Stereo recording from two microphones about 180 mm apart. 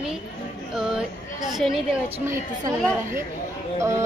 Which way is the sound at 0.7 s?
5° right (ahead or behind).